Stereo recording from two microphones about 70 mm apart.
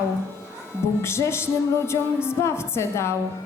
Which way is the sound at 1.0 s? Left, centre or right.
Left.